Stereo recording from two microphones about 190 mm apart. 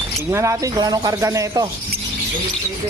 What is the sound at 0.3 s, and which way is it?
Speech, 15° right (ahead or behind).